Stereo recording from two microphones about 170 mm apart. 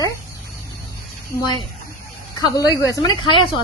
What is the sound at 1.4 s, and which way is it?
Speech, 25° left (ahead or behind).